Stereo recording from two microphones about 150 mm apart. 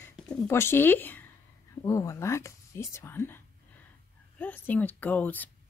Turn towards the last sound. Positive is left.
turn(degrees=10)  # may be behind; listen again after turning